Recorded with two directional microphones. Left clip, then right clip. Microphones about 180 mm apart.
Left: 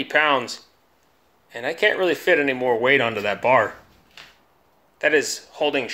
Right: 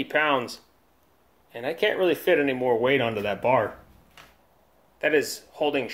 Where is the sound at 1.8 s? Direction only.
Centre (ahead or behind).